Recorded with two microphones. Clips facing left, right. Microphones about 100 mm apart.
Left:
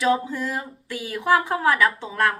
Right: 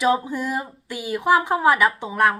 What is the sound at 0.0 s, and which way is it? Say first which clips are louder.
Speech: right 1 dB; 20° right (ahead or behind).